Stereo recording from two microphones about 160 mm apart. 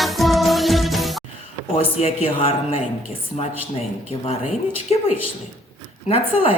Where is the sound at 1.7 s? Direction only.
40° left (ahead or behind).